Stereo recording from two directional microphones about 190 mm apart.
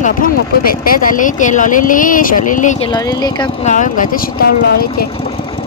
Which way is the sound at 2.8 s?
20° left (ahead or behind).